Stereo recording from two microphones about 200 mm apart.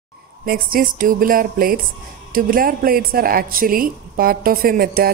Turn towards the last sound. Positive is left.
turn(degrees=-50)  # may be behind; listen again after turning